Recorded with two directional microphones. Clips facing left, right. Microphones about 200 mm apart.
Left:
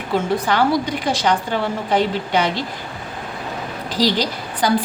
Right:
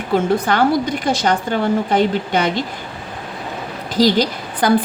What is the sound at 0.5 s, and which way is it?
A woman's voice, 50° right (ahead or behind).